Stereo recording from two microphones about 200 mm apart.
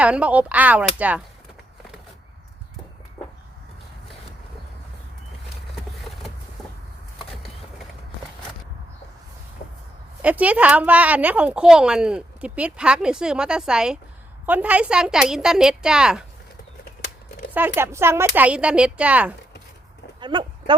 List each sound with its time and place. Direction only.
0.0 s speech: 5° right (ahead or behind)
10.2 s a woman's voice: 5° right (ahead or behind)
17.5 s speech: 10° right (ahead or behind)
20.1 s a sound: 25° right (ahead or behind)